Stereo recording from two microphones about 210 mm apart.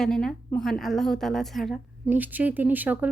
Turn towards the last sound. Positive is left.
turn(degrees=-10)  # may be behind; listen again after turning